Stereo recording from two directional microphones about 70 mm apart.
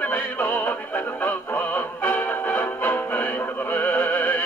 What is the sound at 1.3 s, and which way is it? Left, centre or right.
Music, left.